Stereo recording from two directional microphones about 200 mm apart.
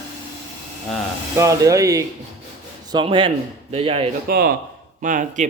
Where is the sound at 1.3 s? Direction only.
15° right (ahead or behind).